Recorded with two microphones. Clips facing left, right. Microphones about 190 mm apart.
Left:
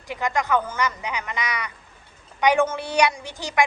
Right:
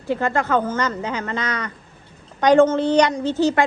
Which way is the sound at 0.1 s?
15° left (ahead or behind).